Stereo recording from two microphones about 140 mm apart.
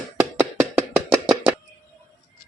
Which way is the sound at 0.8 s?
15° right (ahead or behind).